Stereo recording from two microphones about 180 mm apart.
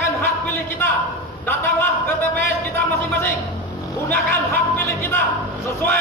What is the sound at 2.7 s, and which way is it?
Music, 15° left (ahead or behind).